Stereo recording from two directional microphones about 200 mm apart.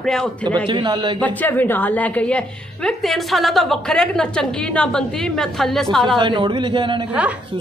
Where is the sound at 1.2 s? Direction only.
10° left (ahead or behind).